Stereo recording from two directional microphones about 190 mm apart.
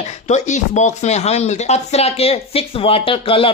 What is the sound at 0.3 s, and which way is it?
Speech, 40° left (ahead or behind).